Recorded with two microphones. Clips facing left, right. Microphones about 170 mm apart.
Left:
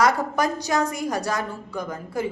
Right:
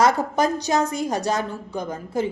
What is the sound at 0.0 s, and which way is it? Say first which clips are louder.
A woman's voice: right 2 dB; 25° right (ahead or behind).